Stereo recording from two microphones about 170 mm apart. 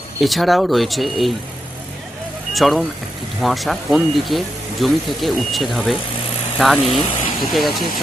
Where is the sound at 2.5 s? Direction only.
Centre (ahead or behind).